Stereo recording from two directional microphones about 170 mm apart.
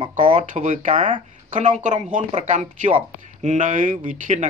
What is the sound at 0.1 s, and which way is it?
Speech, 50° right (ahead or behind).